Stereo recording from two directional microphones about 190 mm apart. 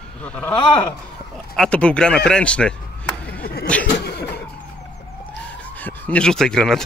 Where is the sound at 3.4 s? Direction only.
55° left (ahead or behind).